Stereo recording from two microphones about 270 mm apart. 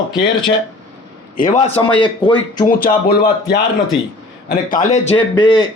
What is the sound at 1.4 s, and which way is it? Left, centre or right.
Speech, left.